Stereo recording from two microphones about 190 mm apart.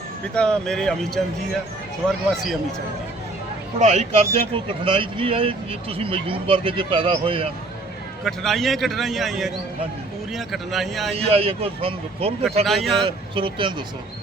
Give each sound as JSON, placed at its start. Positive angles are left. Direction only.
{"t": 0.3, "sound": "a man's voice", "side_deg": 5}
{"t": 3.8, "sound": "speech", "side_deg": -40}
{"t": 8.2, "sound": "a man's voice", "side_deg": 0}
{"t": 11.1, "sound": "a man's voice", "side_deg": -30}
{"t": 12.6, "sound": "a man's voice", "side_deg": 0}
{"t": 13.3, "sound": "speech", "side_deg": -25}